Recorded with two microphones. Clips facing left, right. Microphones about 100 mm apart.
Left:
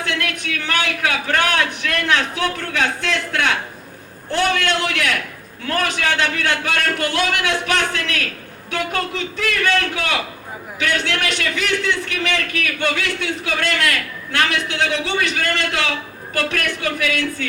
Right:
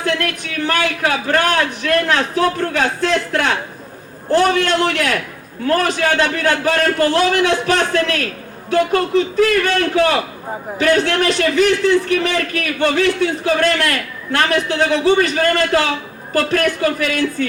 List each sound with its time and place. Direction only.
0.0 s a man's voice: 35° right (ahead or behind)